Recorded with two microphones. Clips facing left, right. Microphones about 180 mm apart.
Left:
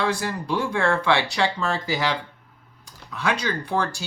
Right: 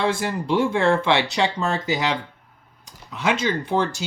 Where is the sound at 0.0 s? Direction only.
25° right (ahead or behind).